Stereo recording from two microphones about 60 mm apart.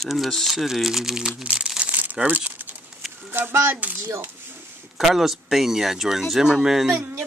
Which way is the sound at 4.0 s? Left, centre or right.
Right.